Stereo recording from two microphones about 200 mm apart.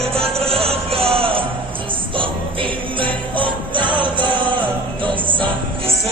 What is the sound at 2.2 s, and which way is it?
Jingle bell, 25° right (ahead or behind).